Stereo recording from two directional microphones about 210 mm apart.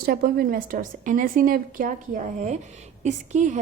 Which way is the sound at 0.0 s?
45° right (ahead or behind).